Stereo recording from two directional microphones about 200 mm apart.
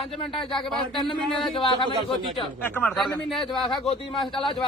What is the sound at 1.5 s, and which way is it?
Speech, 25° left (ahead or behind).